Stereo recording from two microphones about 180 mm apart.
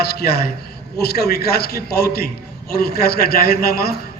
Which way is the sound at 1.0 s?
60° left (ahead or behind).